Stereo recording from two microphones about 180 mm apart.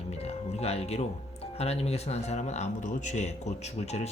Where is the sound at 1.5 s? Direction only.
35° left (ahead or behind).